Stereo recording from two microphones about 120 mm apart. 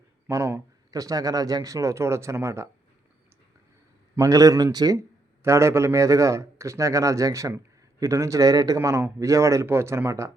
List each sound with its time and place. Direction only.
0.3 s a man's voice: 25° right (ahead or behind)
4.1 s a man's voice: 30° right (ahead or behind)